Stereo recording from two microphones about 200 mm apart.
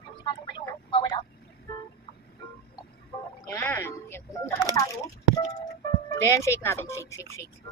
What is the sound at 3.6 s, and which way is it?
Speech, 10° left (ahead or behind).